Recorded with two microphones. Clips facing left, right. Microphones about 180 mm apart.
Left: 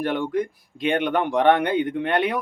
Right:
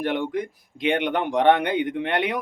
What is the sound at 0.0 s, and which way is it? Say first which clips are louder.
Speech: left 2 dB; 20° right (ahead or behind).